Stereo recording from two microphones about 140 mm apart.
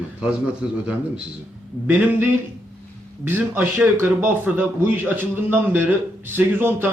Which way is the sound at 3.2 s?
15° right (ahead or behind).